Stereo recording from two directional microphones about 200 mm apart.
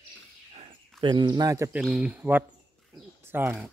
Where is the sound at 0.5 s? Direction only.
25° right (ahead or behind).